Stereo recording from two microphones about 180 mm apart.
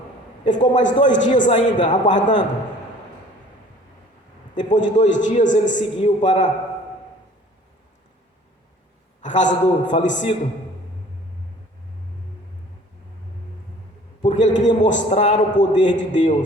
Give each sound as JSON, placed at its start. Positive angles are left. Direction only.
{"t": 0.4, "sound": "a man's voice", "side_deg": 45}
{"t": 4.5, "sound": "a man's voice", "side_deg": 45}
{"t": 9.2, "sound": "a man's voice", "side_deg": 45}
{"t": 14.3, "sound": "a man's voice", "side_deg": 45}